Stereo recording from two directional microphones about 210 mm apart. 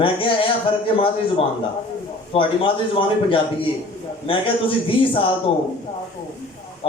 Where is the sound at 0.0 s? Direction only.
25° left (ahead or behind).